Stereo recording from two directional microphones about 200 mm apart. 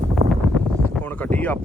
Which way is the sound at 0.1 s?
5° left (ahead or behind).